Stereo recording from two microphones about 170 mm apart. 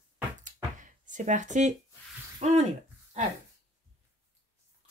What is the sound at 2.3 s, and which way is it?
Speech, 40° right (ahead or behind).